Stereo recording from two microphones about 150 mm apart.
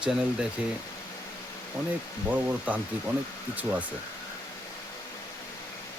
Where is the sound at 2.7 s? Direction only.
10° right (ahead or behind).